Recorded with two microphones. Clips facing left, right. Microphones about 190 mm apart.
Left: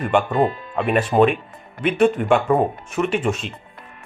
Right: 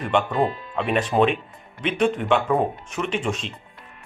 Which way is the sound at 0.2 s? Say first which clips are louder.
Left 2 dB; 50° left (ahead or behind).